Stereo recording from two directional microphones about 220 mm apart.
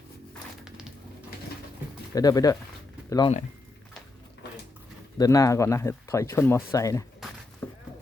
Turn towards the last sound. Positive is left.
turn(degrees=10)  # may be behind; listen again after turning